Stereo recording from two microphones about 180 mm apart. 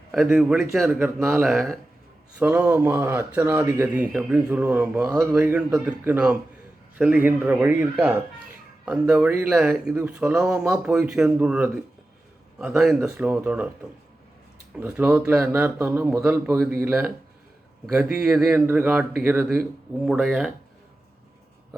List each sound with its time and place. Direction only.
0.1 s speech: 5° right (ahead or behind)
2.4 s speech: 10° right (ahead or behind)
14.8 s speech: 10° right (ahead or behind)